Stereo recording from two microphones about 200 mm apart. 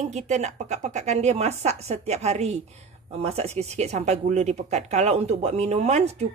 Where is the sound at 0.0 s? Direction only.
35° right (ahead or behind).